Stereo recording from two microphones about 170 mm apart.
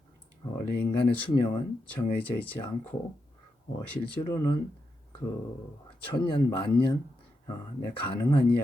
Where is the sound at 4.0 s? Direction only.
20° left (ahead or behind).